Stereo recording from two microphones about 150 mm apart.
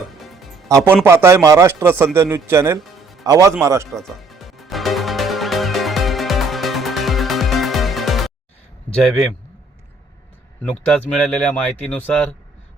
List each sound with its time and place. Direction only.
0.2 s music: centre (ahead or behind)
1.0 s speech: 15° right (ahead or behind)
3.9 s music: centre (ahead or behind)
10.6 s speech: 10° left (ahead or behind)